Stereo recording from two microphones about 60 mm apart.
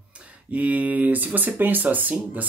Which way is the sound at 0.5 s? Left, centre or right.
Right.